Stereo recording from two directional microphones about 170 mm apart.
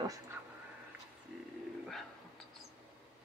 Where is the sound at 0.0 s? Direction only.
20° right (ahead or behind).